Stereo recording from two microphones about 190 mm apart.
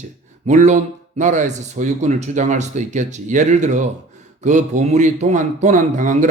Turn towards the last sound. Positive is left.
turn(degrees=-40)  # may be behind; listen again after turning